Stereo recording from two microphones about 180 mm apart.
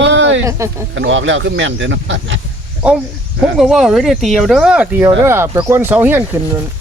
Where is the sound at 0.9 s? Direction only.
90° right.